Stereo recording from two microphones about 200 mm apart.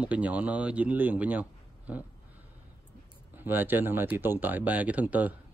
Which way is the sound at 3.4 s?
10° right (ahead or behind).